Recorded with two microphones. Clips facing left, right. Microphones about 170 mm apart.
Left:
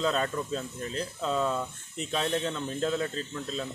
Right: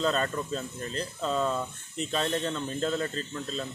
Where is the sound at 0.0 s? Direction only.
5° left (ahead or behind).